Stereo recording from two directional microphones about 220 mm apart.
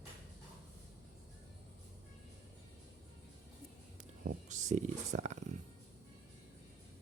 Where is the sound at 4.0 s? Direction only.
35° right (ahead or behind).